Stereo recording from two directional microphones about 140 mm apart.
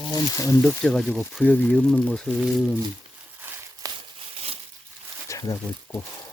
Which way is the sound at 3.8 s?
25° right (ahead or behind).